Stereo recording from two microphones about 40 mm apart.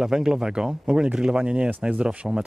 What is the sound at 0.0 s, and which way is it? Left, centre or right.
Speech, centre.